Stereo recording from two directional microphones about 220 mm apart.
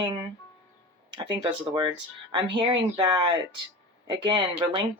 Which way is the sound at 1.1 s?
20° right (ahead or behind).